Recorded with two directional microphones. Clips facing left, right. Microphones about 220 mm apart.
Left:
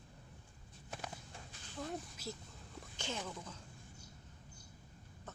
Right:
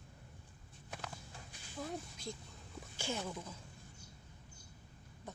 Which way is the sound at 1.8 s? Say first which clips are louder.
Even; centre (ahead or behind).